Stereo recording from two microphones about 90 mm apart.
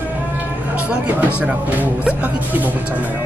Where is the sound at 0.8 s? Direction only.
15° right (ahead or behind).